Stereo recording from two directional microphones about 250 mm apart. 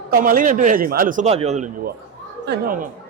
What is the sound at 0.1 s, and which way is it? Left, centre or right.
A man's voice, right.